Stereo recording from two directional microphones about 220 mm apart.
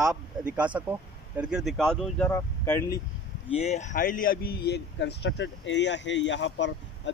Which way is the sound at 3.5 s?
30° left (ahead or behind).